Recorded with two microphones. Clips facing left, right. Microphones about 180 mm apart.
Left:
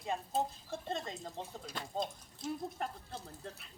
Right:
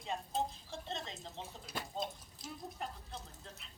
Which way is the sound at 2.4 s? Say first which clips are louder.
Left 6 dB; 50° left (ahead or behind).